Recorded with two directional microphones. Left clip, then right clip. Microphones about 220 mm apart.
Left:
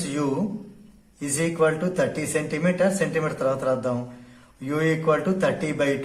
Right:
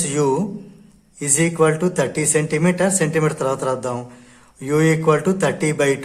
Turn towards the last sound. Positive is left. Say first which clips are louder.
# right 5 dB
turn(degrees=-40)  # may be behind; listen again after turning